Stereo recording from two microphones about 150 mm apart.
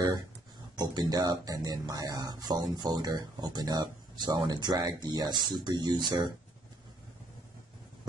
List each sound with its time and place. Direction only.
0.7 s speech: 25° right (ahead or behind)